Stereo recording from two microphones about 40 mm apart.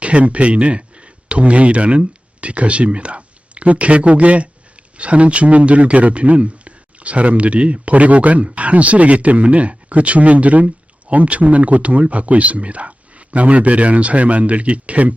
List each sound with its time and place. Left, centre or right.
0.0 s speech: right